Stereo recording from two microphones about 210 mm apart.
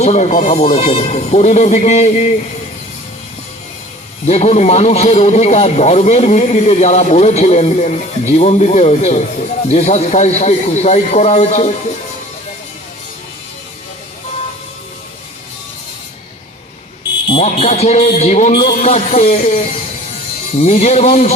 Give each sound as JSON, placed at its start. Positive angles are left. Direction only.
{"t": 0.0, "sound": "a man's voice", "side_deg": 35}
{"t": 4.3, "sound": "a man's voice", "side_deg": 30}
{"t": 17.2, "sound": "a man's voice", "side_deg": 30}